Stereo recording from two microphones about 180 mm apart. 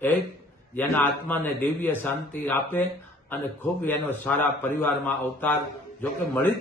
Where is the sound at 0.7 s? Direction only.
10° left (ahead or behind).